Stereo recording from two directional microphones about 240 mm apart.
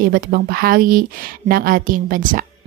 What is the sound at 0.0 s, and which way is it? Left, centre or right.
Speech, right.